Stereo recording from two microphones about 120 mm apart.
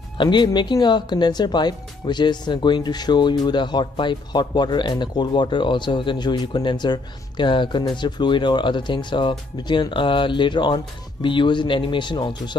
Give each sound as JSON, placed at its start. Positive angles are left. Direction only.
{"t": 0.2, "sound": "speech", "side_deg": 40}